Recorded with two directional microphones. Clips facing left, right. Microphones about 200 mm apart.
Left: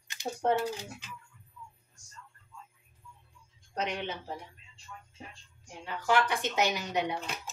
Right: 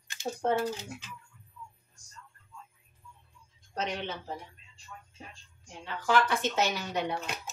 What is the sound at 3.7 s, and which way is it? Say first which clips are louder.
Speech: even; 10° left (ahead or behind).